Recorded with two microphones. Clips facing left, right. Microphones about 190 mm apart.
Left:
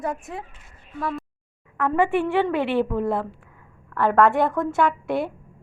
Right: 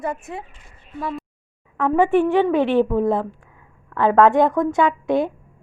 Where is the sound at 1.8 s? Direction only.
15° right (ahead or behind).